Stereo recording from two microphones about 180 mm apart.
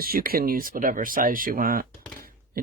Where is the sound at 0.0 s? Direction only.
55° right (ahead or behind).